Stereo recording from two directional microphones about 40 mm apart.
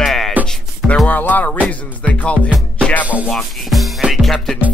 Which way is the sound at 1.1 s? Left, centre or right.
Left.